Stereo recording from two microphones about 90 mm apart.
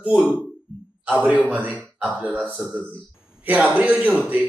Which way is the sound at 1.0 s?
15° right (ahead or behind).